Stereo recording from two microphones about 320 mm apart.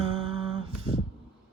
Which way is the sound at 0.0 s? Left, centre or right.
Centre.